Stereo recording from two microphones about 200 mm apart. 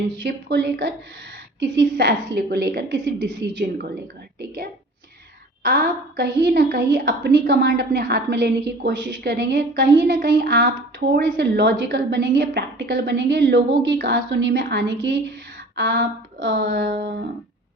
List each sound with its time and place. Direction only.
0.2 s a woman's voice: 60° right (ahead or behind)